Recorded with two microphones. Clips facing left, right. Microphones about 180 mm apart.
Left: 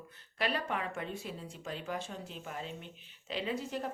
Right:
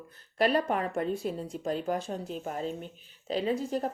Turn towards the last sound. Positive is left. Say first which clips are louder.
# right 7 dB
turn(degrees=-40)  # may be behind; listen again after turning